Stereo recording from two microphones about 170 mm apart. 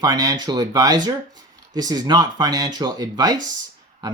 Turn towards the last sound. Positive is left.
turn(degrees=-25)  # may be behind; listen again after turning